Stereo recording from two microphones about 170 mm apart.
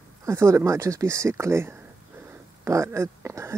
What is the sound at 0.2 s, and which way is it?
Speech, 15° right (ahead or behind).